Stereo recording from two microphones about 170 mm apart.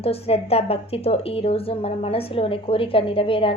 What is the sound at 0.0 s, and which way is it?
A woman's voice, 35° left (ahead or behind).